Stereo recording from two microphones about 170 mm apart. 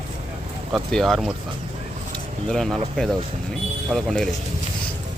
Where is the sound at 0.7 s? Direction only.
Centre (ahead or behind).